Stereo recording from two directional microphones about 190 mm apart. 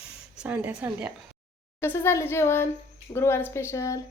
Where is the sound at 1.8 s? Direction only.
15° left (ahead or behind).